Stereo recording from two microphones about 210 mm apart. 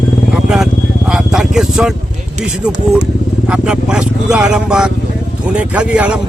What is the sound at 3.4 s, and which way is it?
Speech, 5° right (ahead or behind).